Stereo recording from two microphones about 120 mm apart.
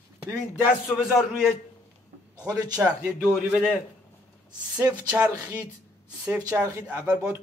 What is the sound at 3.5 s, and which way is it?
Speech, 5° right (ahead or behind).